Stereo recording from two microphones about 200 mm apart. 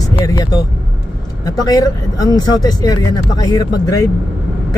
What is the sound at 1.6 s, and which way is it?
Speech, 20° left (ahead or behind).